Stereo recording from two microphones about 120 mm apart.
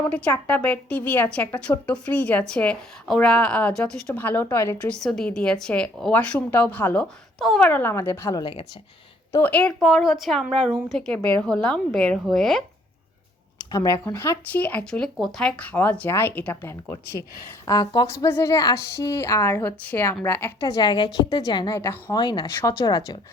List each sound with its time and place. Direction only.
0.1 s a woman's voice: 10° left (ahead or behind)
4.2 s a woman's voice: 15° left (ahead or behind)
4.8 s a woman's voice: 5° left (ahead or behind)
7.3 s speech: centre (ahead or behind)
7.7 s a woman's voice: 20° left (ahead or behind)
9.4 s a woman's voice: 10° left (ahead or behind)
13.7 s speech: 35° left (ahead or behind)
14.0 s a woman's voice: 20° left (ahead or behind)
17.7 s a woman's voice: 30° left (ahead or behind)
20.6 s a woman's voice: 30° left (ahead or behind)
21.8 s a woman's voice: 20° left (ahead or behind)
22.1 s a woman's voice: 40° left (ahead or behind)